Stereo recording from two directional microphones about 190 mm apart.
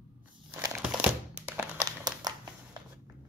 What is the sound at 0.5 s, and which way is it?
Crumpling, 10° right (ahead or behind).